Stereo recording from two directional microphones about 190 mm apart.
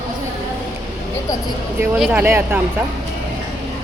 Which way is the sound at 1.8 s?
10° right (ahead or behind).